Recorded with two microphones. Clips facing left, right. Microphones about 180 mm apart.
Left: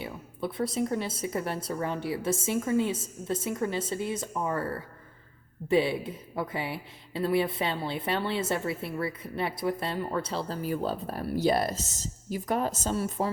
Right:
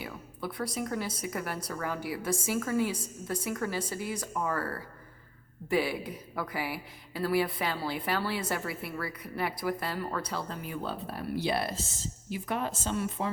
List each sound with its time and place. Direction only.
0.0 s speech: 25° left (ahead or behind)